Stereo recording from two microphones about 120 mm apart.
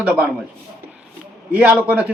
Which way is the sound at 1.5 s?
5° right (ahead or behind).